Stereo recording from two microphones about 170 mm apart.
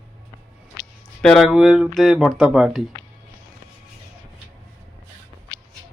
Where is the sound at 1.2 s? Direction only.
Centre (ahead or behind).